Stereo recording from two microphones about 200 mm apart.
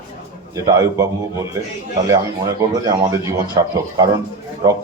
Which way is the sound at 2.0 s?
15° right (ahead or behind).